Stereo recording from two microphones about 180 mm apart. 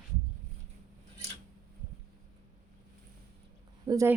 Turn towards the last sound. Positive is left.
turn(degrees=-20)  # may be behind; listen again after turning